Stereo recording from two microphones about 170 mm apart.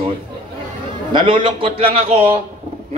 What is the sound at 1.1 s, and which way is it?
Speech, 30° right (ahead or behind).